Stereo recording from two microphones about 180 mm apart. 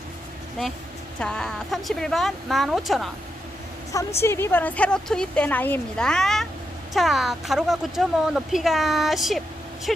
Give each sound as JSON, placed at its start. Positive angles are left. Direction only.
{"t": 1.2, "sound": "speech", "side_deg": 5}
{"t": 4.2, "sound": "a woman's voice", "side_deg": 15}